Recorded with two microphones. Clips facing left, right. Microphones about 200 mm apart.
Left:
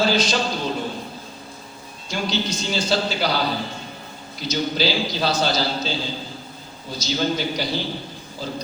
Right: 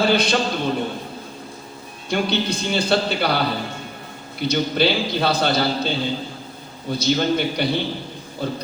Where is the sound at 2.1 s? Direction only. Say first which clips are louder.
Right 4 dB; 60° right (ahead or behind).